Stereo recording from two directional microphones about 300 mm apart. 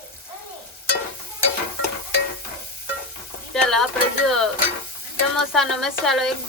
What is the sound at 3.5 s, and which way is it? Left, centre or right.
Stir, centre.